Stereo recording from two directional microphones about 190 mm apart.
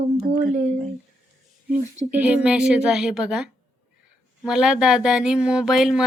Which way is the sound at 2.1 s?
5° right (ahead or behind).